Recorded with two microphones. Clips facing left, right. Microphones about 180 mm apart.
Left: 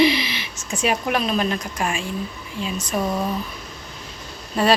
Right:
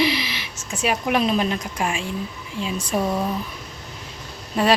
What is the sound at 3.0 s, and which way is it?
Speech, 5° right (ahead or behind).